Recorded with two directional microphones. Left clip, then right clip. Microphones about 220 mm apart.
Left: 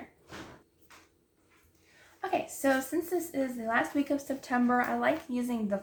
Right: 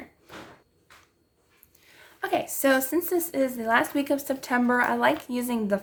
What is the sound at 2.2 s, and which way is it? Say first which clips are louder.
Speech: right 5 dB; 50° right (ahead or behind).